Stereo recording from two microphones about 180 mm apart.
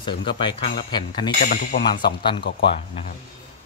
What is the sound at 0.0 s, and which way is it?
Speech, 25° left (ahead or behind).